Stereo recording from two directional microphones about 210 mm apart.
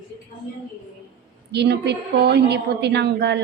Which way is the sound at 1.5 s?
55° right (ahead or behind).